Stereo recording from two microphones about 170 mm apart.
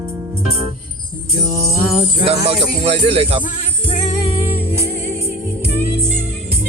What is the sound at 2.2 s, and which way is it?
Speech, 35° right (ahead or behind).